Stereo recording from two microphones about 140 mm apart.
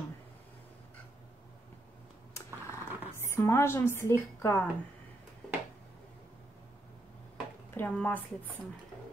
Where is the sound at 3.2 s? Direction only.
15° left (ahead or behind).